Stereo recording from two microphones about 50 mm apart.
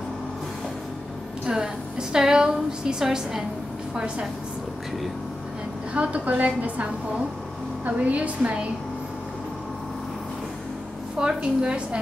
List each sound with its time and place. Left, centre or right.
1.4 s a woman's voice: centre
5.9 s a woman's voice: right
11.1 s a woman's voice: centre